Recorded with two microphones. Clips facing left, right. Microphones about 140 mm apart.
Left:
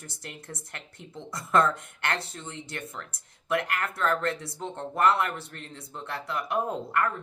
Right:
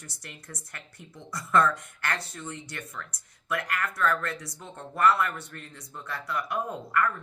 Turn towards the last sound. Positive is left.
turn(degrees=25)  # may be behind; listen again after turning